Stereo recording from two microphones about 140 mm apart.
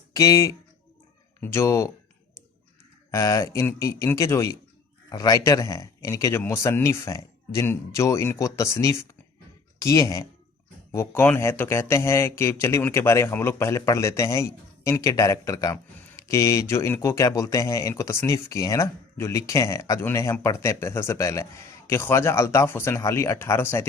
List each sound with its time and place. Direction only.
0.1 s speech: 25° left (ahead or behind)
3.1 s speech: 20° left (ahead or behind)